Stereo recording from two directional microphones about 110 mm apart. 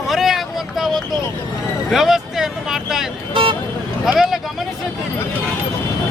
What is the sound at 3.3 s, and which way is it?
Speech, 50° right (ahead or behind).